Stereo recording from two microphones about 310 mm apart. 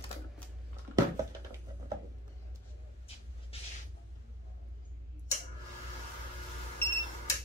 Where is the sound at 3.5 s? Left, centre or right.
Centre.